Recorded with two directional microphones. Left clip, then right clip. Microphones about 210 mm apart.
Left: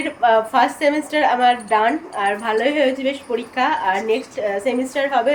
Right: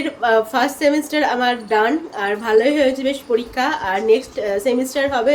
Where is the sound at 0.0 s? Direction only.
15° right (ahead or behind).